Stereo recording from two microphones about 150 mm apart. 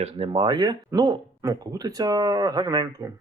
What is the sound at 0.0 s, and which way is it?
Speech, 35° right (ahead or behind).